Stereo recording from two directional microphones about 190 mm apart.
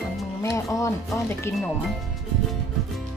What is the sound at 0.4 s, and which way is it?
Speech, 15° left (ahead or behind).